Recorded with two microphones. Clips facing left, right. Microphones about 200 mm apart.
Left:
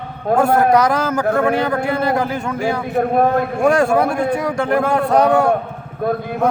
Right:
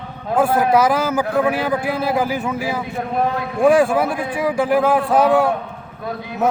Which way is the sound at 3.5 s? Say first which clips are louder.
Right 3 dB; 5° right (ahead or behind).